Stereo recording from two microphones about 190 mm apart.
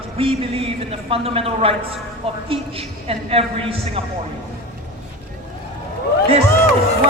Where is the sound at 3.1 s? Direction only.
30° right (ahead or behind).